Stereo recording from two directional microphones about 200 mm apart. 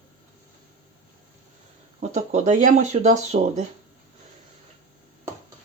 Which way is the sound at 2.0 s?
35° right (ahead or behind).